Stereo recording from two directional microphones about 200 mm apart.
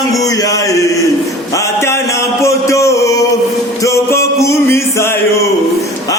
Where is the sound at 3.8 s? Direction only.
15° left (ahead or behind).